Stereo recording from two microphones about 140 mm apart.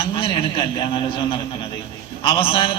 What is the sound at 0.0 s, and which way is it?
A man's voice, 40° left (ahead or behind).